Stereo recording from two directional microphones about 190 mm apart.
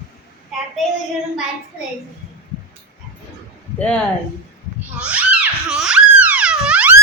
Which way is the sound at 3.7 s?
5° left (ahead or behind).